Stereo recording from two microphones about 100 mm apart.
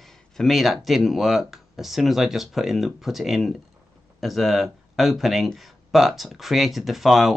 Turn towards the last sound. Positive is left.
turn(degrees=0)  # may be behind; listen again after turning